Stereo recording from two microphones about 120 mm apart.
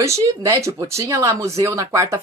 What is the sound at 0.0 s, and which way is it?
Speech, 25° right (ahead or behind).